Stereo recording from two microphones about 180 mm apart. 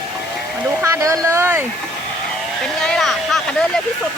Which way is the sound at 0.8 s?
15° right (ahead or behind).